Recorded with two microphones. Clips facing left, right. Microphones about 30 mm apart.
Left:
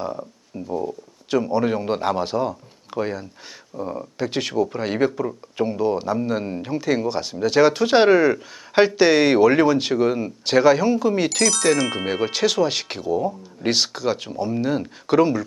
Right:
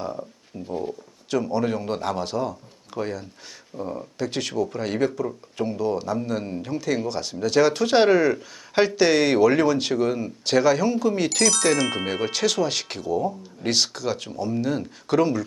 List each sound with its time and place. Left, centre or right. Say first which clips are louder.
0.0 s speech: left 2 dB; centre
0.7 s speech: left 3 dB; centre
1.3 s speech: left 3 dB; centre
11.3 s speech: left 2 dB; centre